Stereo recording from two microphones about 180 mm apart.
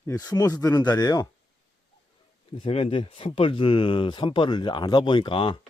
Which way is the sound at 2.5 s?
30° left (ahead or behind).